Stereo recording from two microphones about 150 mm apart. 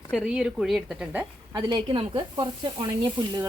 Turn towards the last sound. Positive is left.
turn(degrees=-30)  # may be behind; listen again after turning